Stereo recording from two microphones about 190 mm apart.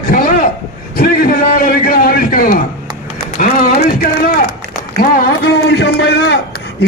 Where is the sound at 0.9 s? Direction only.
50° left (ahead or behind).